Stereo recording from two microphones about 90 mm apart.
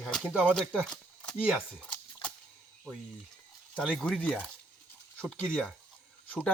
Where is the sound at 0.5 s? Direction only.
5° left (ahead or behind).